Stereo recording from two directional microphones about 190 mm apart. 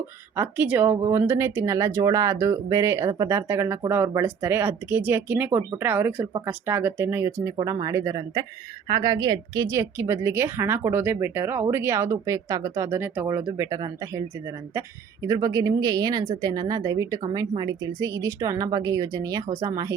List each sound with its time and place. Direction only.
0.3 s a woman's voice: 10° right (ahead or behind)